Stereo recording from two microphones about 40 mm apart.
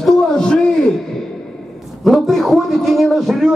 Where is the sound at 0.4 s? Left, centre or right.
Centre.